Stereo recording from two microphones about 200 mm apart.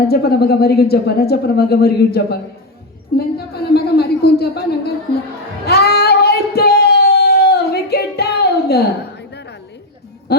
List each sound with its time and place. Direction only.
0.1 s a woman's voice: 55° left (ahead or behind)
5.6 s child singing: 50° left (ahead or behind)